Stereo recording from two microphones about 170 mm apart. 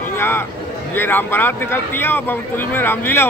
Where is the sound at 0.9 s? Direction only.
10° left (ahead or behind).